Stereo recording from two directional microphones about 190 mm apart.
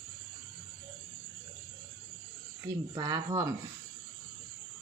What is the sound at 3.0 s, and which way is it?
Speech, 20° right (ahead or behind).